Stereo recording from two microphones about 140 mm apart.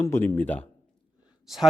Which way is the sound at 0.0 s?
15° left (ahead or behind).